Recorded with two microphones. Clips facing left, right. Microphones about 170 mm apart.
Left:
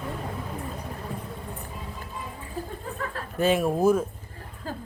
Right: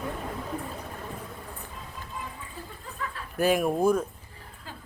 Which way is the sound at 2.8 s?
45° left (ahead or behind).